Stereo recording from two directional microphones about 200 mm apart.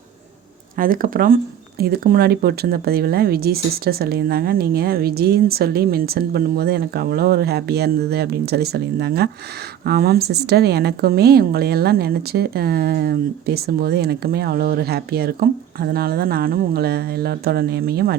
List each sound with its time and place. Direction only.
0.8 s a woman's voice: 45° right (ahead or behind)